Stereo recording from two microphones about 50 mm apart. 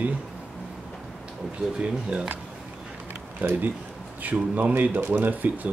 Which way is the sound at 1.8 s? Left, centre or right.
Centre.